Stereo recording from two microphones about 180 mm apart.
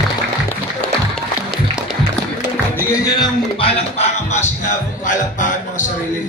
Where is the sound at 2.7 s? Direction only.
20° left (ahead or behind); by 4.5 s 40° left (ahead or behind).